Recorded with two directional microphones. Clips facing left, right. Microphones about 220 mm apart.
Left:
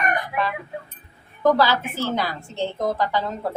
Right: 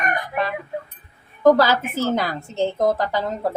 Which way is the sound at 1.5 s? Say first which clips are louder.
Right 2 dB; 45° right (ahead or behind).